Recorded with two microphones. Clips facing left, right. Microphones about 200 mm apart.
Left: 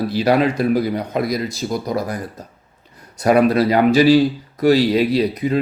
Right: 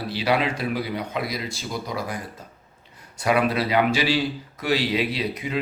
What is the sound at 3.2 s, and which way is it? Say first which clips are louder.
A man's voice: left 8 dB; 40° left (ahead or behind).